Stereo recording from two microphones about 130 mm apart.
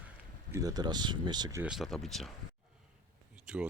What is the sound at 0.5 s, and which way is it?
Speech, 30° right (ahead or behind).